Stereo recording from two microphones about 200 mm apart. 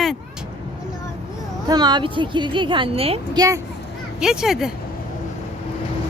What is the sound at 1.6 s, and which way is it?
A woman's voice, 20° right (ahead or behind).